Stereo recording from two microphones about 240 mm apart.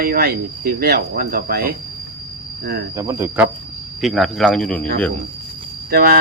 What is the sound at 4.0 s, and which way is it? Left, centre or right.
Speech, centre.